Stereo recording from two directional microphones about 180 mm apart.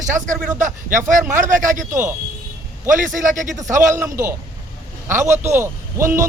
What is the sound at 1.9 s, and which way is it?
Speech, 15° right (ahead or behind).